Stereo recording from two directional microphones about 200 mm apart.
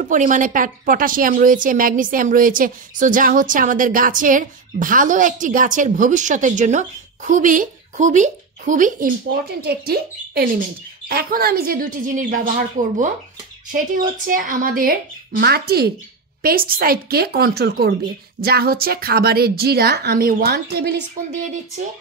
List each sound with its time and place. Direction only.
0.0 s a woman's voice: 40° right (ahead or behind)